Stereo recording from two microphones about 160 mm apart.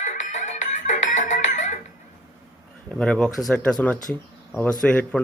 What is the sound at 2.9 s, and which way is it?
Speech, 5° left (ahead or behind).